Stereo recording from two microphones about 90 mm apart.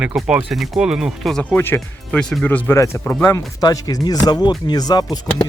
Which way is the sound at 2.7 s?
35° left (ahead or behind).